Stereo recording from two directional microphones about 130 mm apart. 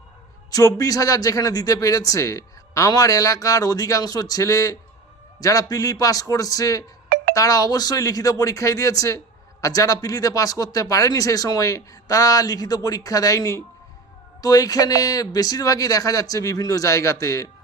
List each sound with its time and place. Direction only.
0.5 s speech: 25° left (ahead or behind)